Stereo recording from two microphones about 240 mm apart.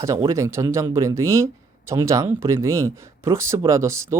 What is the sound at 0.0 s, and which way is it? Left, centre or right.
Speech, centre.